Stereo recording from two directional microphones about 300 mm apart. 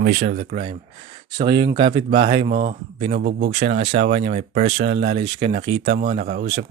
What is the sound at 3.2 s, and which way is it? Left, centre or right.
Speech, right.